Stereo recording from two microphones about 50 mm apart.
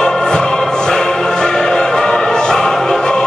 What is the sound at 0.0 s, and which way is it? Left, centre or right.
Music, centre.